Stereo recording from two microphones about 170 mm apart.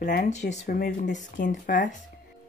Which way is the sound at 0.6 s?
60° left (ahead or behind).